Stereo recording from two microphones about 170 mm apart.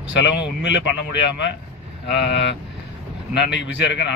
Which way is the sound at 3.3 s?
90° left.